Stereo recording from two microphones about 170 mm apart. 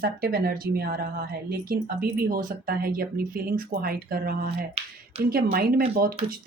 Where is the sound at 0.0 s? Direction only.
60° right (ahead or behind).